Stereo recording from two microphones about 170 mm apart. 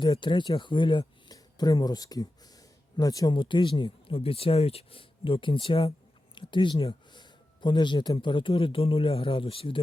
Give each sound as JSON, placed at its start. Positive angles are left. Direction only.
{"t": 0.0, "sound": "speech", "side_deg": 30}